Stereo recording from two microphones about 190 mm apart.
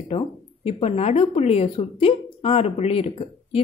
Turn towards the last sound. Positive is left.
turn(degrees=30)  # may be behind; listen again after turning